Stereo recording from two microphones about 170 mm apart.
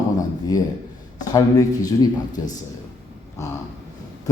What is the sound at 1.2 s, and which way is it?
A man's voice, 20° left (ahead or behind).